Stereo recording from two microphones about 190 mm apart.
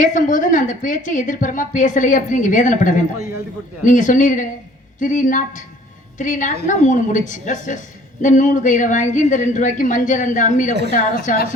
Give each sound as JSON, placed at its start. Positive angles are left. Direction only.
{"t": 0.0, "sound": "a woman's voice", "side_deg": 45}